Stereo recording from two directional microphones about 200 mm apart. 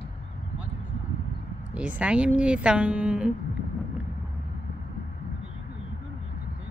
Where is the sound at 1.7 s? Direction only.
5° right (ahead or behind).